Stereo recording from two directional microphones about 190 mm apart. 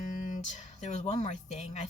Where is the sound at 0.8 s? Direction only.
40° left (ahead or behind).